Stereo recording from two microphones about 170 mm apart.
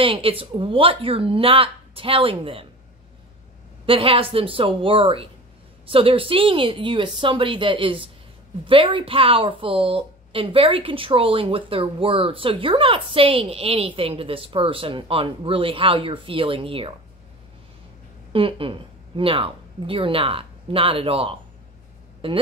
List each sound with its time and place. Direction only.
0.0 s a woman's voice: 30° right (ahead or behind)
3.8 s a woman's voice: 30° right (ahead or behind)
18.3 s a woman's voice: 30° right (ahead or behind)